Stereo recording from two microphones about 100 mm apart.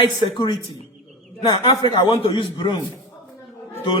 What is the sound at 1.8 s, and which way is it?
Speech, 45° left (ahead or behind).